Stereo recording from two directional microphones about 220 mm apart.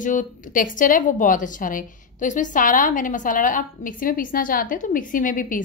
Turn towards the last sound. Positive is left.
turn(degrees=40)  # may be behind; listen again after turning